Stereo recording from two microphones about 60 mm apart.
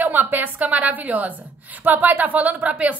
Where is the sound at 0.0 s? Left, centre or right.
Right.